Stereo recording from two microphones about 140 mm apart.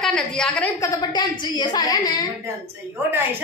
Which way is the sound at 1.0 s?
30° left (ahead or behind).